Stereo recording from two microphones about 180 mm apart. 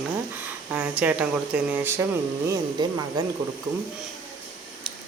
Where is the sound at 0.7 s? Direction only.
10° right (ahead or behind).